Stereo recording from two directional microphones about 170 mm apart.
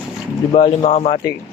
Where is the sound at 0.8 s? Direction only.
40° left (ahead or behind).